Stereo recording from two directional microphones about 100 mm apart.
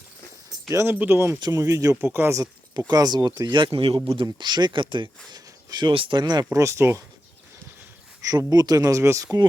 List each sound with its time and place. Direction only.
0.7 s speech: 30° right (ahead or behind)
1.4 s speech: 35° right (ahead or behind)
2.9 s speech: 40° right (ahead or behind); by 4.0 s 55° right (ahead or behind)
4.4 s speech: 45° right (ahead or behind)
5.9 s speech: 60° right (ahead or behind)
6.4 s speech: 30° right (ahead or behind)
8.2 s speech: 35° right (ahead or behind)